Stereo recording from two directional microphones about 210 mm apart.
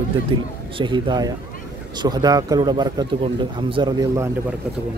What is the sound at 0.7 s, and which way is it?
Speech, 25° right (ahead or behind).